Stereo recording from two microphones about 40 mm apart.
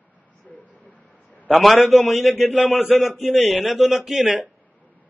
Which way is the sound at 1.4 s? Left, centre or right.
Centre.